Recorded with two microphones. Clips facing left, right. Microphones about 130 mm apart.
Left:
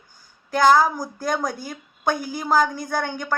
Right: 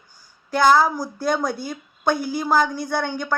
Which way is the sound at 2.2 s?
45° left (ahead or behind).